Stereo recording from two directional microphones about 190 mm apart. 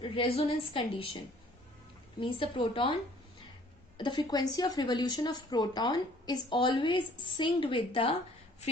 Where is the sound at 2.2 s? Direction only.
25° left (ahead or behind).